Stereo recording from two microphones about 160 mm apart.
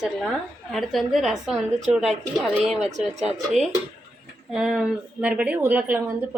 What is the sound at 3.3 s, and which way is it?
A woman's voice, centre (ahead or behind).